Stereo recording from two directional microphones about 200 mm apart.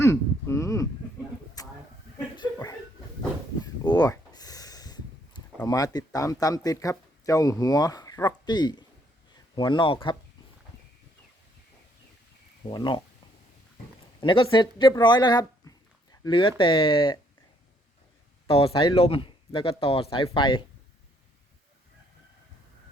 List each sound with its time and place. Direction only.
0.0 s speech: 15° left (ahead or behind)
1.6 s a sound: 20° left (ahead or behind)
2.3 s dog: 20° left (ahead or behind)
3.6 s a sound: 20° left (ahead or behind)
5.6 s a woman's voice: 20° left (ahead or behind)
12.6 s a woman's voice: 25° left (ahead or behind)
14.2 s a woman's voice: 25° left (ahead or behind)
18.4 s a woman's voice: 30° left (ahead or behind)